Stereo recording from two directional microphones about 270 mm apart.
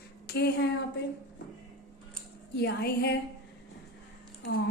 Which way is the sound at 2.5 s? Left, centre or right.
Left.